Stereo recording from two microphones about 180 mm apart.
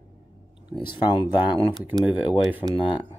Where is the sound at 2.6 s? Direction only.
25° left (ahead or behind).